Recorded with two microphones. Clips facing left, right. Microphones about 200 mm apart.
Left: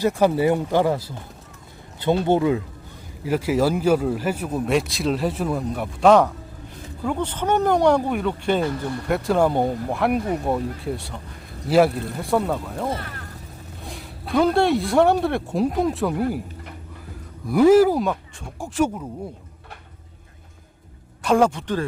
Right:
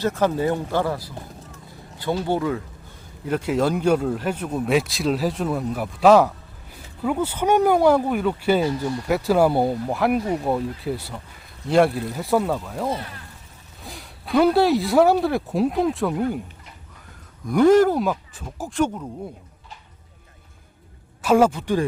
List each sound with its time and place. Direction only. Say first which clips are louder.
0.0 s speech: left 3 dB; 10° left (ahead or behind)
2.2 s a man's voice: left 4 dB; 20° left (ahead or behind)
3.2 s a man's voice: left 1 dB; 5° left (ahead or behind)
17.5 s a man's voice: left 1 dB; 5° left (ahead or behind)
21.2 s a man's voice: right 1 dB; 5° right (ahead or behind)